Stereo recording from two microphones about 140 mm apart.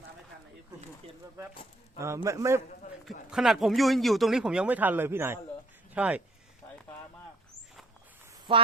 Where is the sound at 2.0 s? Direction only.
20° right (ahead or behind).